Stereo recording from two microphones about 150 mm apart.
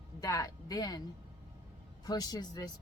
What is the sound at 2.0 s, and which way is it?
Speech, 25° left (ahead or behind).